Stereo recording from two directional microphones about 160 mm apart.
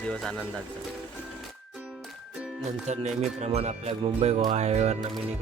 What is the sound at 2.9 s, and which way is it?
Speech, 45° right (ahead or behind).